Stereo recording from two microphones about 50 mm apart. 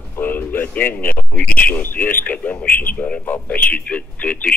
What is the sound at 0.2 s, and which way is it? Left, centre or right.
Speech, left.